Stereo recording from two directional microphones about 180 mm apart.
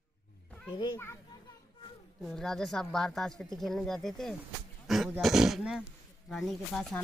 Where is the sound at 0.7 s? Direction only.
25° left (ahead or behind).